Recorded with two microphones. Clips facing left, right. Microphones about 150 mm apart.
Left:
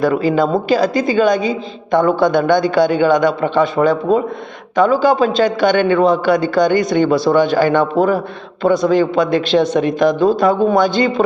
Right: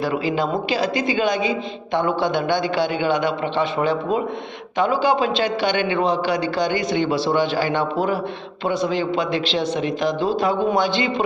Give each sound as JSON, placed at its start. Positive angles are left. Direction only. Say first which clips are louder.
{"t": 0.0, "sound": "a woman's voice", "louder": "left 7 dB", "side_deg": 45}